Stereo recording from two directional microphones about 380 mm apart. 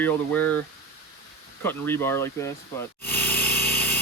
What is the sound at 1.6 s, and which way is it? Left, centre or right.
Speech, centre.